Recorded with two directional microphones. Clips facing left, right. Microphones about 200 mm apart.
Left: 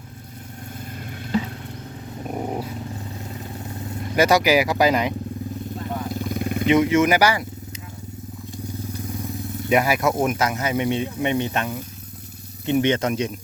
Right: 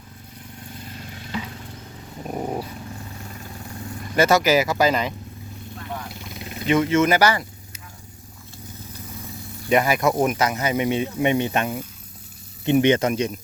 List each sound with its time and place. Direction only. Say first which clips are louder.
2.3 s dog: even; 5° left (ahead or behind)
4.1 s speech: even; 15° left (ahead or behind)
6.1 s vehicle: left 11 dB; 45° left (ahead or behind)
6.7 s speech: left 1 dB; 15° left (ahead or behind)
9.6 s speech: even; 5° left (ahead or behind); by 13.0 s 20° right (ahead or behind)
13.0 s speech: right 1 dB; centre (ahead or behind)